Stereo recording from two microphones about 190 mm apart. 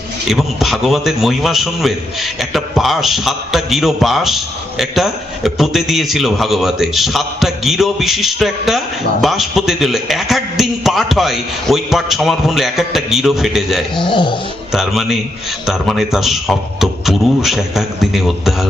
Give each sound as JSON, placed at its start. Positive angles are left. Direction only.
{"t": 0.3, "sound": "a man's voice", "side_deg": 0}
{"t": 13.9, "sound": "dog", "side_deg": 25}
{"t": 14.7, "sound": "a man's voice", "side_deg": 0}